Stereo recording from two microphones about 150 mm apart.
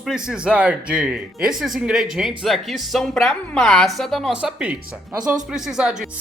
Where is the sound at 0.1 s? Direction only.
5° right (ahead or behind).